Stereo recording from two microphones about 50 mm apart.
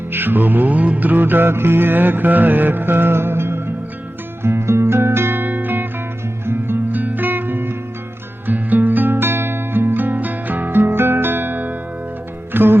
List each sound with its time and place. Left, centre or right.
0.1 s music: right
6.4 s music: right
6.9 s music: right
9.1 s music: right